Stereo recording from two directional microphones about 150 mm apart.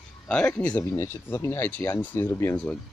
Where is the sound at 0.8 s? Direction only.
20° left (ahead or behind).